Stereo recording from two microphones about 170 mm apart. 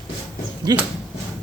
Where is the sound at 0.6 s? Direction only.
25° right (ahead or behind).